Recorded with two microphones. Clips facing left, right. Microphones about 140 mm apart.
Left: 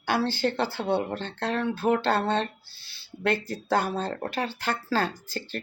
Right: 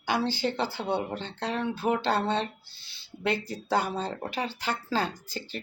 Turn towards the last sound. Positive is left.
turn(degrees=-15)  # may be behind; listen again after turning